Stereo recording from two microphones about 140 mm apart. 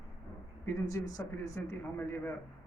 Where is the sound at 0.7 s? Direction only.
25° left (ahead or behind).